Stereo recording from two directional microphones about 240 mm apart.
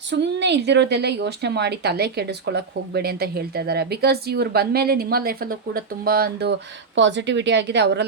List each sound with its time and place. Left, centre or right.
0.1 s a woman's voice: right